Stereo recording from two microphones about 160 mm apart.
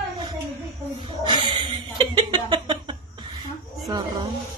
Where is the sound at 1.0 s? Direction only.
30° right (ahead or behind).